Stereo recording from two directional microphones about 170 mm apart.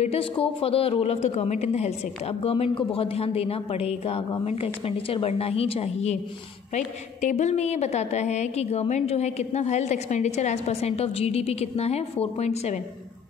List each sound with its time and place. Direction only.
0.0 s a woman's voice: 35° left (ahead or behind)